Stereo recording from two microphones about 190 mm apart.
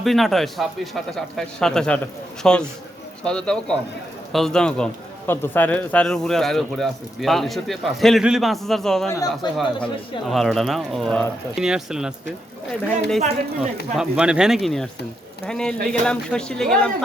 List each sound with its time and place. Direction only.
0.0 s a man's voice: centre (ahead or behind)
9.0 s speech: 15° left (ahead or behind)
9.6 s a man's voice: centre (ahead or behind)
13.9 s a man's voice: 5° right (ahead or behind)